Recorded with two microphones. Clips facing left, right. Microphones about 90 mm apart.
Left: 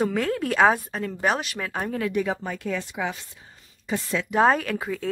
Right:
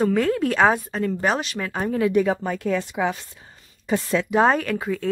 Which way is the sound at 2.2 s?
50° right (ahead or behind).